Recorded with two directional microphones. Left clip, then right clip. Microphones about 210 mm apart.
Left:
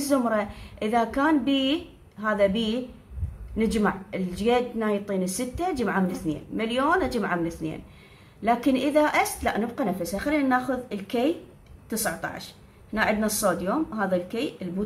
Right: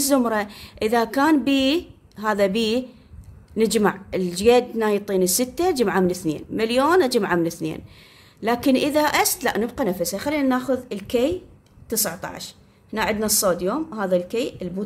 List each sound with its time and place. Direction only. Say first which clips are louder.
0.0 s a woman's voice: right 4 dB; 45° right (ahead or behind)